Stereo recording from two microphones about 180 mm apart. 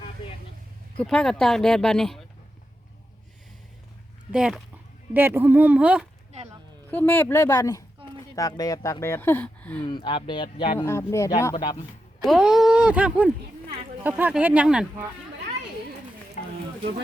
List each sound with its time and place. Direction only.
0.9 s speech: 5° left (ahead or behind)
4.3 s speech: 5° right (ahead or behind)
6.9 s speech: 10° left (ahead or behind)
9.8 s speech: 25° left (ahead or behind)
10.8 s speech: 15° left (ahead or behind)
11.5 s speech: 25° left (ahead or behind)
12.2 s speech: centre (ahead or behind)
16.4 s a sound: 40° left (ahead or behind)